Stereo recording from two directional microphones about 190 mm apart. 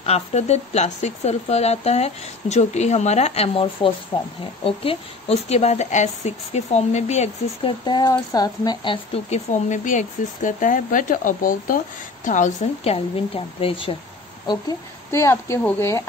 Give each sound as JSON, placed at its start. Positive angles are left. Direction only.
{"t": 0.0, "sound": "speech", "side_deg": 35}
{"t": 7.8, "sound": "speech", "side_deg": 20}
{"t": 14.5, "sound": "a woman's voice", "side_deg": 15}